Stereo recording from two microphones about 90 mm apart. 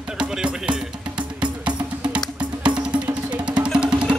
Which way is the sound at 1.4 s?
15° right (ahead or behind).